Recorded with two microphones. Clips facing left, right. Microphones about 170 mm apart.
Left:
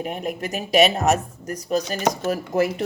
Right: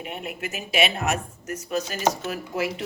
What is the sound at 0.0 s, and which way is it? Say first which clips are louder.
Speech: left 6 dB; 40° left (ahead or behind).